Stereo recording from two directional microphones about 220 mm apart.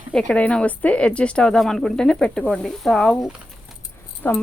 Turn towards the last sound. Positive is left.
turn(degrees=10)  # may be behind; listen again after turning